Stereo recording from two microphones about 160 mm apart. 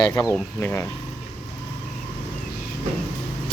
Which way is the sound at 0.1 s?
20° left (ahead or behind).